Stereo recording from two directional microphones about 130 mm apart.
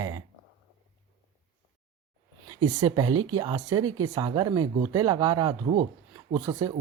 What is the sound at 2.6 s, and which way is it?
Speech, 30° right (ahead or behind).